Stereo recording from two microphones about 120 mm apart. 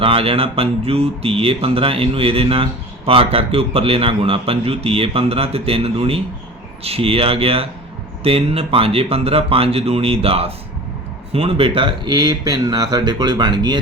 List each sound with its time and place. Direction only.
0.0 s a man's voice: 50° right (ahead or behind)